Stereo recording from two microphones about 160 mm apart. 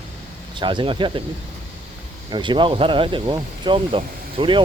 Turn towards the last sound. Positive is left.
turn(degrees=-30)  # may be behind; listen again after turning